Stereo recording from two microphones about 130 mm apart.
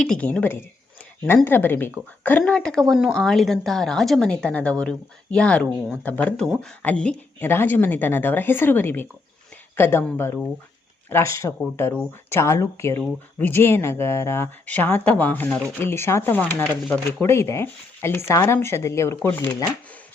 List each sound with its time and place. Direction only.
0.0 s a woman's voice: 10° left (ahead or behind)